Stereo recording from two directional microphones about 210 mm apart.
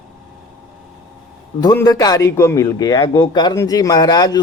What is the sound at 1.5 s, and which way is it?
A man's voice, 20° left (ahead or behind).